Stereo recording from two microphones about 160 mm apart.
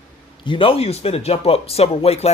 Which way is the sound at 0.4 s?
30° left (ahead or behind).